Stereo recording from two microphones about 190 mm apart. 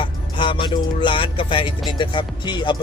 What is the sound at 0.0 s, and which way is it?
Music, 25° left (ahead or behind).